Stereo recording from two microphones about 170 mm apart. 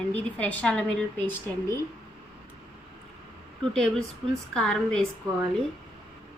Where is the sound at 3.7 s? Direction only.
5° left (ahead or behind).